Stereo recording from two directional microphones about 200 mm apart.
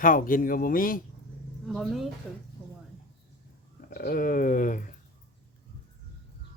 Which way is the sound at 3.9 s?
45° left (ahead or behind).